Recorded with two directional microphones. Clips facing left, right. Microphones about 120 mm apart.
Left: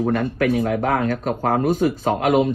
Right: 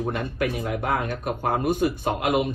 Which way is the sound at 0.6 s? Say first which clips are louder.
Left 6 dB; 65° left (ahead or behind).